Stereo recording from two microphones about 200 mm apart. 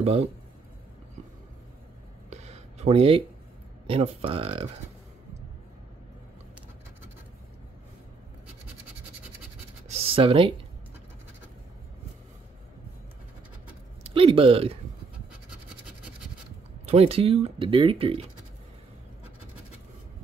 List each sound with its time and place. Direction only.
0.0 s speech: 30° right (ahead or behind)
2.2 s a sound: 35° right (ahead or behind)
3.8 s speech: 30° right (ahead or behind)
9.8 s a sound: 30° right (ahead or behind)
14.0 s speech: 30° right (ahead or behind)
16.8 s speech: 30° right (ahead or behind)